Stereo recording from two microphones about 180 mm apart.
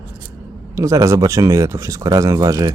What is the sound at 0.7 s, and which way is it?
Speech, 15° right (ahead or behind).